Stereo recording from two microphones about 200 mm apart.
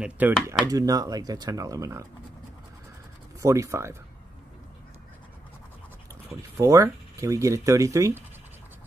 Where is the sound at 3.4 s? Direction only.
15° right (ahead or behind).